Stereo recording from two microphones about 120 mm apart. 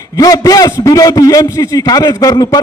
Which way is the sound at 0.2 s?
30° left (ahead or behind).